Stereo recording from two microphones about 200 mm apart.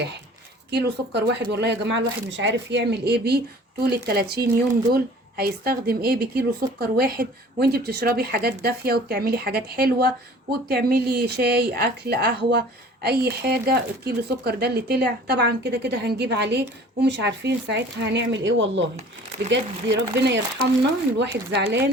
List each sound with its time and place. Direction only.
0.7 s speech: 55° right (ahead or behind)